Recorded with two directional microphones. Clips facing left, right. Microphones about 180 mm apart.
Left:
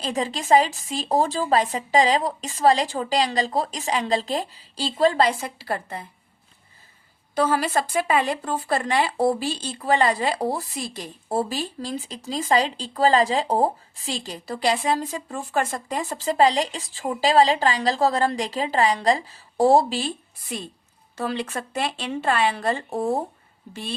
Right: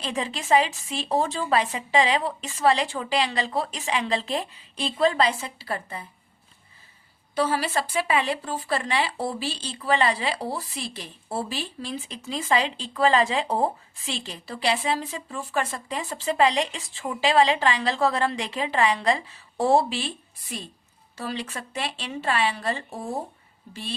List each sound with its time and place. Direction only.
0.0 s speech: 40° left (ahead or behind)
7.3 s speech: 50° left (ahead or behind)
21.2 s speech: 50° left (ahead or behind)